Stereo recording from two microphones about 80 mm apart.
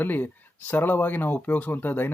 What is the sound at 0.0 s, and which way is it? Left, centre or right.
Speech, left.